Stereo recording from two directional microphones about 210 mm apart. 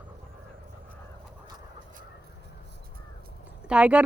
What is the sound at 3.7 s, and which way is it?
Speech, 5° right (ahead or behind).